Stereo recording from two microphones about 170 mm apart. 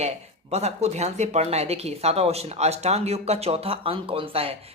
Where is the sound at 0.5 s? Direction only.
40° right (ahead or behind).